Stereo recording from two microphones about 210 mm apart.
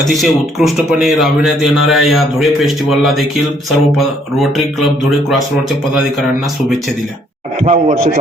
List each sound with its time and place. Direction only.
0.0 s speech: centre (ahead or behind)
7.6 s speech: 30° right (ahead or behind)